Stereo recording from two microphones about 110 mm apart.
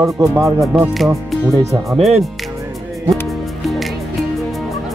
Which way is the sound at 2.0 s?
80° right.